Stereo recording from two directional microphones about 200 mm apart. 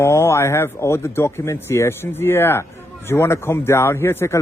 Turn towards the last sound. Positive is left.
turn(degrees=10)  # may be behind; listen again after turning